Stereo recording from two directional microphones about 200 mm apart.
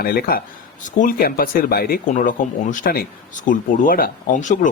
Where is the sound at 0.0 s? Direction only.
50° left (ahead or behind).